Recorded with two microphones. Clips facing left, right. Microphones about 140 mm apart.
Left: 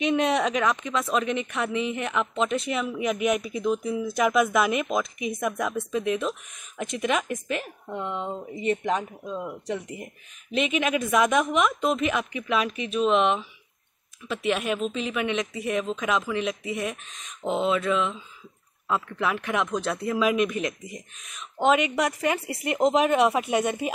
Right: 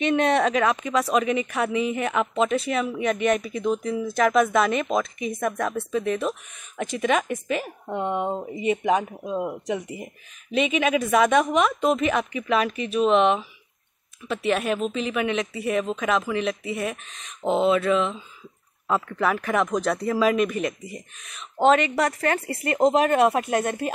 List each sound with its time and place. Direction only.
0.0 s speech: centre (ahead or behind)
7.9 s speech: 20° right (ahead or behind)
8.5 s speech: 10° right (ahead or behind)
9.2 s speech: 30° right (ahead or behind)
9.8 s speech: 10° right (ahead or behind)
21.6 s a woman's voice: 10° left (ahead or behind)